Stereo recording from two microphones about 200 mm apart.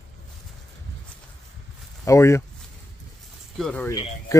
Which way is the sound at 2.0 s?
15° left (ahead or behind).